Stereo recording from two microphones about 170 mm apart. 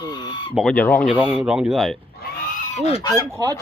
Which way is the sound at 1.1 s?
10° right (ahead or behind).